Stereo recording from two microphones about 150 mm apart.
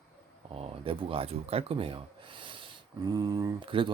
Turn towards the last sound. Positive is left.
turn(degrees=-35)  # may be behind; listen again after turning